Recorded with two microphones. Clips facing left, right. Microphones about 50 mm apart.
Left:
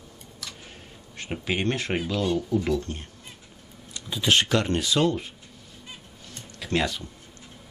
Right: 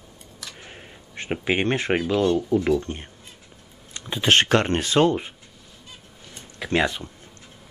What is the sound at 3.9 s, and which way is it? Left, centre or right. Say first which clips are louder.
Speech: right 3 dB; right.